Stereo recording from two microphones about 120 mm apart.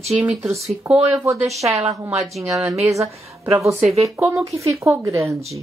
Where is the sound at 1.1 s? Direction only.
15° right (ahead or behind).